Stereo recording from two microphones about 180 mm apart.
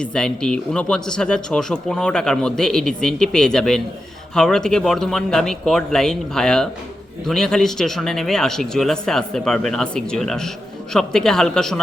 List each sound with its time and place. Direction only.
0.0 s speech: 5° left (ahead or behind)